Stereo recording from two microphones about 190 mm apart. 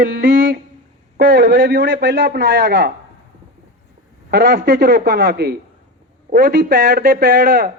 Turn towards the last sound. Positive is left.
turn(degrees=-50)  # may be behind; listen again after turning